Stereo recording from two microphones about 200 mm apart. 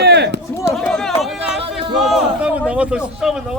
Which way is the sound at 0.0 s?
55° right (ahead or behind).